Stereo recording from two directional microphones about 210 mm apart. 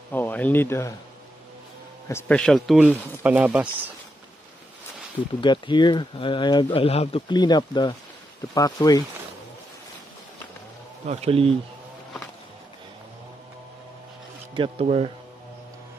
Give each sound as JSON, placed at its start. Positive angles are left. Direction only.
{"t": 0.1, "sound": "speech", "side_deg": 10}
{"t": 2.0, "sound": "speech", "side_deg": 10}
{"t": 3.2, "sound": "speech", "side_deg": -10}
{"t": 5.4, "sound": "speech", "side_deg": 20}
{"t": 11.1, "sound": "speech", "side_deg": -30}
{"t": 14.5, "sound": "speech", "side_deg": -25}